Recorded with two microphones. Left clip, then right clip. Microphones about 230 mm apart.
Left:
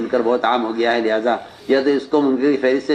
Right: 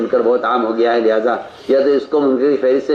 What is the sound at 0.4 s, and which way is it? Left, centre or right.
A man's voice, left.